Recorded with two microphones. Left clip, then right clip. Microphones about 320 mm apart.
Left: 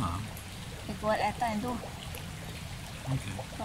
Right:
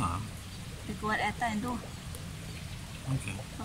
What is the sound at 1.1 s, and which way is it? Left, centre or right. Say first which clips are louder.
Speech: left 2 dB; centre.